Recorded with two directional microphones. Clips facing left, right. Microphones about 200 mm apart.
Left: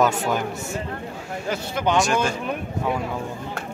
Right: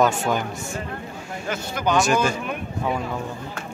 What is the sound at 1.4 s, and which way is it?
Speech, 30° left (ahead or behind).